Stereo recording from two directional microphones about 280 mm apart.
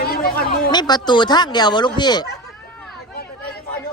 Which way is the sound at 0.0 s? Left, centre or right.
Left.